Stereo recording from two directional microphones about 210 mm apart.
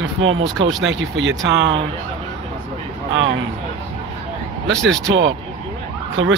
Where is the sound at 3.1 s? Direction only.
60° right (ahead or behind).